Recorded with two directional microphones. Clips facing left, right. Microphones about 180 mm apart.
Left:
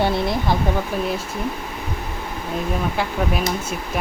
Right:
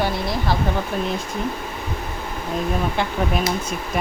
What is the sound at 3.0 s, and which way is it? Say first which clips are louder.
Speech: left 1 dB; 5° left (ahead or behind).